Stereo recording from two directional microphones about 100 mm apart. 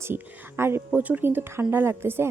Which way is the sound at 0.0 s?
25° right (ahead or behind).